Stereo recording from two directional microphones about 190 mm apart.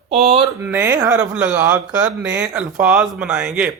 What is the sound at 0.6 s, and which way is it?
A man's voice, 10° right (ahead or behind).